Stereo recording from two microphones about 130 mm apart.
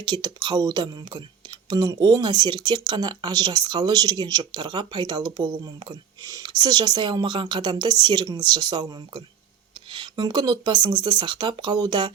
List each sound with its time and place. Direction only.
0.0 s speech: 35° right (ahead or behind)